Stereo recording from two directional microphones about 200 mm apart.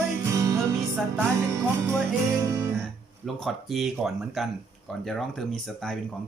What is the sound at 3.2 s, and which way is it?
Speech, centre (ahead or behind).